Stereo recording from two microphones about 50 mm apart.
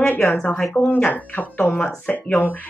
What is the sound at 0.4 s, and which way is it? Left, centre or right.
Speech, centre.